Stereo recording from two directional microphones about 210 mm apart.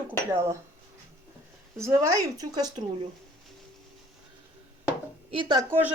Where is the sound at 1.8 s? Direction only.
15° right (ahead or behind).